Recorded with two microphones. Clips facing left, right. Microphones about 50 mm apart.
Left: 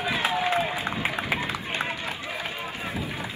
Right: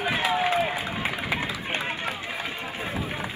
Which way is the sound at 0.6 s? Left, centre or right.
Right.